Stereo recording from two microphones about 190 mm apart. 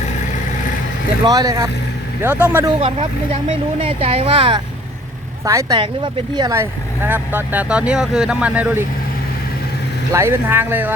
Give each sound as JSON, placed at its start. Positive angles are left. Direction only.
{"t": 1.2, "sound": "speech", "side_deg": -20}
{"t": 3.8, "sound": "speech", "side_deg": -30}
{"t": 5.5, "sound": "speech", "side_deg": -15}
{"t": 10.1, "sound": "speech", "side_deg": -15}